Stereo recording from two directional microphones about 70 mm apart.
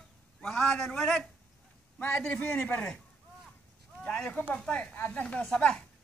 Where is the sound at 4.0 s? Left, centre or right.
Centre.